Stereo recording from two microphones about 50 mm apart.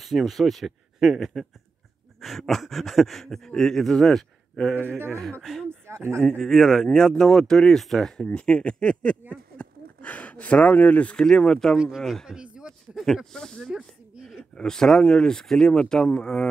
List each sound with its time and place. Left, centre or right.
0.0 s speech: centre
4.8 s speech: right
5.4 s speech: centre
8.4 s speech: left
9.3 s a sound: left
10.8 s speech: left
11.1 s speech: centre
11.7 s speech: centre
12.0 s speech: centre
12.3 s speech: centre
12.9 s speech: centre